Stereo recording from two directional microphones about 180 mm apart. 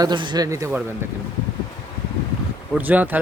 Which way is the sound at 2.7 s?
10° right (ahead or behind).